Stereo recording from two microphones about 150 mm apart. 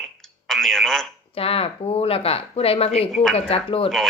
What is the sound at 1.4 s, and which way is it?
Speech, 40° left (ahead or behind).